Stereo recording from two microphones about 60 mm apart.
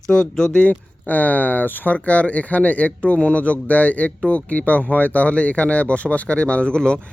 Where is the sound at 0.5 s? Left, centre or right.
Left.